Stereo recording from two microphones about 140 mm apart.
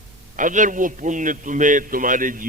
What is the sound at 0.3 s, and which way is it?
A man's voice, 65° right (ahead or behind).